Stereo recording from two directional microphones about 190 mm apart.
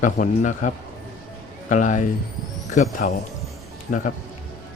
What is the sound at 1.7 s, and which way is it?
A man's voice, 40° left (ahead or behind).